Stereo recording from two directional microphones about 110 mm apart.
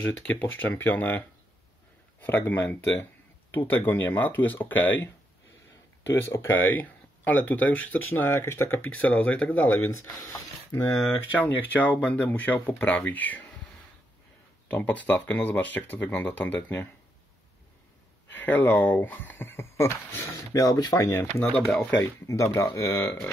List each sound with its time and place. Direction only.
0.0 s speech: 15° left (ahead or behind)
6.1 s speech: 20° left (ahead or behind)
9.8 s speech: 25° left (ahead or behind)
11.1 s speech: 20° left (ahead or behind)
14.7 s speech: 15° left (ahead or behind)
18.3 s speech: 15° left (ahead or behind)
21.5 s speech: 5° left (ahead or behind)
21.9 s speech: 25° left (ahead or behind)